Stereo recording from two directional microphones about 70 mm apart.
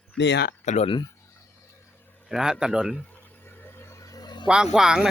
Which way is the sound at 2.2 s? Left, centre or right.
Centre.